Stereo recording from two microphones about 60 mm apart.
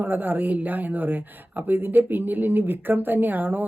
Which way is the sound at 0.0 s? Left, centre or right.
Right.